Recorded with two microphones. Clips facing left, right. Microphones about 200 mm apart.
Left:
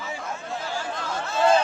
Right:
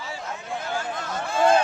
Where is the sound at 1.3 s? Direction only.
55° right (ahead or behind).